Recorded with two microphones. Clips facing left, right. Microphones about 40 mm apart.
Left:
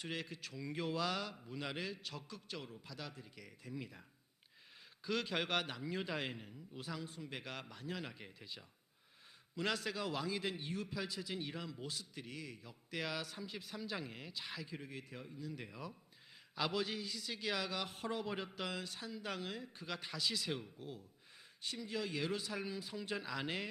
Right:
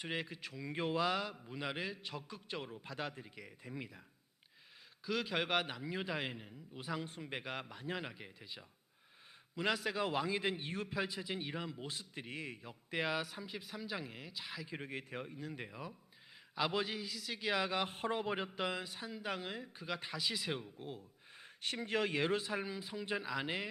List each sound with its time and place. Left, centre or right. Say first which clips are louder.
0.0 s a man's voice: right 3 dB; centre; by 3.3 s right
3.3 s a man's voice: right 1 dB; right
5.0 s a man's voice: right 2 dB; centre; by 8.1 s right
8.1 s a man's voice: right 1 dB; centre
10.0 s a man's voice: right 4 dB; right
13.2 s a man's voice: right 1 dB; centre
14.7 s a man's voice: right 4 dB; right
15.5 s a man's voice: right 2 dB; right
16.8 s a man's voice: right 1 dB; centre
17.4 s a man's voice: right 5 dB; right
20.6 s a man's voice: right 2 dB; right
21.3 s speech: right 4 dB; right
22.6 s a man's voice: right 1 dB; centre